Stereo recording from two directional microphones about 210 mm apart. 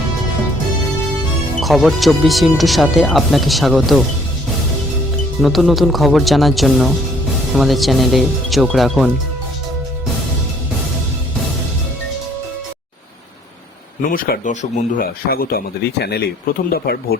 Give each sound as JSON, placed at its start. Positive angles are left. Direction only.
{"t": 1.6, "sound": "speech", "side_deg": 0}
{"t": 5.4, "sound": "speech", "side_deg": 0}
{"t": 14.1, "sound": "speech", "side_deg": 40}